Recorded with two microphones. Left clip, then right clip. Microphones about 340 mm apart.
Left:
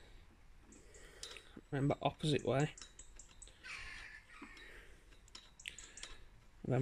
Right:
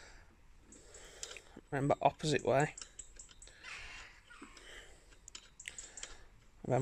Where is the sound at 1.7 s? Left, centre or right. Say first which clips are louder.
Right 6 dB; centre.